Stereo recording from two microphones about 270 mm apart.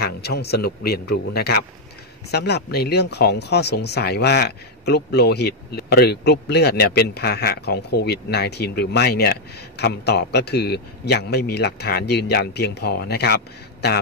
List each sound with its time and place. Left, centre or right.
0.0 s speech: left